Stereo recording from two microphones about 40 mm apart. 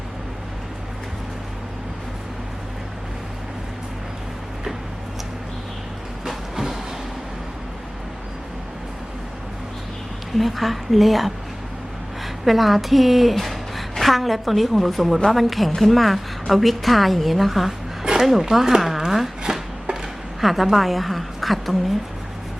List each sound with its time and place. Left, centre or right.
6.2 s vehicle: centre
10.3 s a woman's voice: centre
18.0 s a sound: centre
18.3 s speech: centre
20.4 s a woman's voice: centre